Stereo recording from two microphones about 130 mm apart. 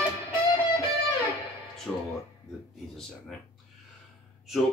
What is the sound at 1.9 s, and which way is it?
Speech, 15° left (ahead or behind).